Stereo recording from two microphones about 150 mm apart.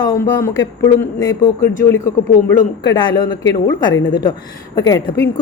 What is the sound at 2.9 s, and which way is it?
A woman's voice, 30° left (ahead or behind).